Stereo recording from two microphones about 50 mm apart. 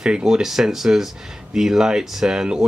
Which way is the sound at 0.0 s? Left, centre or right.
Centre.